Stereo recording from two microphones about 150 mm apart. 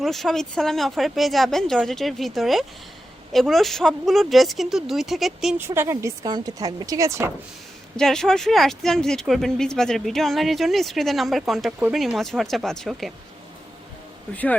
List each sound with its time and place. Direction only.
0.0 s speech: centre (ahead or behind)
5.5 s speech: 15° right (ahead or behind)
7.9 s speech: 5° left (ahead or behind)